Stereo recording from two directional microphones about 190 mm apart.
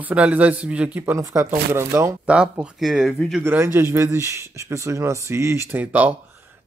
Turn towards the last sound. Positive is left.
turn(degrees=-10)  # may be behind; listen again after turning